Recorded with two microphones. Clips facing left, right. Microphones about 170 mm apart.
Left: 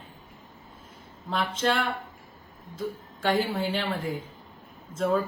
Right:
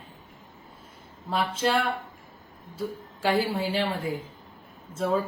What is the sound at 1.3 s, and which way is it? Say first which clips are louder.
Speech: right 1 dB; 10° right (ahead or behind).